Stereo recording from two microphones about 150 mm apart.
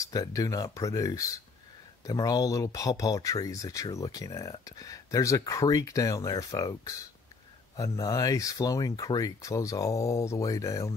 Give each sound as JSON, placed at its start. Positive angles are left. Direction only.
{"t": 0.0, "sound": "speech", "side_deg": 25}